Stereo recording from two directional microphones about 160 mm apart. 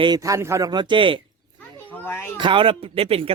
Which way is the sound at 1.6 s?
10° left (ahead or behind).